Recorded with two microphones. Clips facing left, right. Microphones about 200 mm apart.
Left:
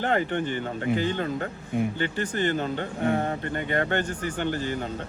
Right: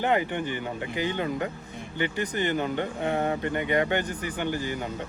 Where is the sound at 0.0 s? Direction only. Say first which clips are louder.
Even; 15° right (ahead or behind).